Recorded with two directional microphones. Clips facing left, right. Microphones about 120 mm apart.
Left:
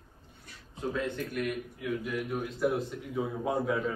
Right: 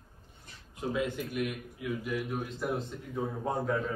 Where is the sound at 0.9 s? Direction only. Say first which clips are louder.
Right 1 dB; 10° right (ahead or behind).